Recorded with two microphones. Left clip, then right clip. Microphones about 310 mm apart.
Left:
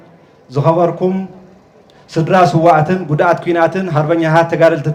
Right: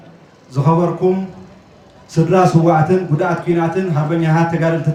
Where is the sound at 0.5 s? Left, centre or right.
Left.